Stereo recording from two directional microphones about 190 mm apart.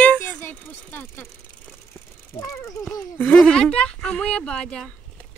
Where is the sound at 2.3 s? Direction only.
15° left (ahead or behind).